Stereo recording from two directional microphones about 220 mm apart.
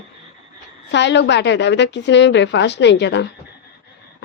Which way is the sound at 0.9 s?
55° left (ahead or behind).